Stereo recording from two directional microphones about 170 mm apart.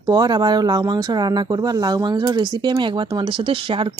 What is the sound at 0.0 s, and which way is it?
Speech, 25° right (ahead or behind).